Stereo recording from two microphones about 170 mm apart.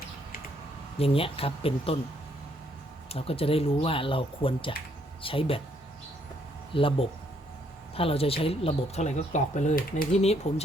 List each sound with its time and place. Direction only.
0.9 s speech: 35° left (ahead or behind)
3.1 s speech: 35° left (ahead or behind)
6.7 s speech: 30° left (ahead or behind); by 10.1 s 50° left (ahead or behind)
10.1 s speech: 40° left (ahead or behind)